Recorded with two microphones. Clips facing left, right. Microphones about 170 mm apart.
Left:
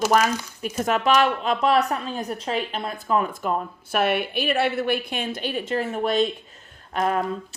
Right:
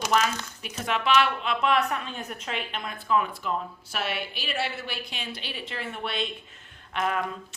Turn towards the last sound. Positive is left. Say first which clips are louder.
# left 5 dB
turn(degrees=40)  # may be behind; listen again after turning